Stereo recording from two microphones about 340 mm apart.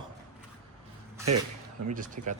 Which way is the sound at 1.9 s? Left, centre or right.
Right.